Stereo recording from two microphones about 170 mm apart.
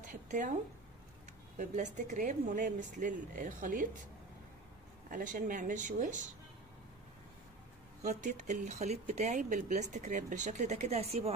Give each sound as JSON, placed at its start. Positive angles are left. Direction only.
{"t": 0.0, "sound": "speech", "side_deg": -50}
{"t": 1.6, "sound": "speech", "side_deg": -45}
{"t": 5.1, "sound": "speech", "side_deg": -50}
{"t": 8.0, "sound": "speech", "side_deg": -45}